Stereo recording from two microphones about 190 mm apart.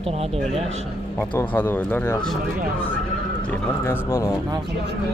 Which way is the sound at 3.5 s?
10° left (ahead or behind).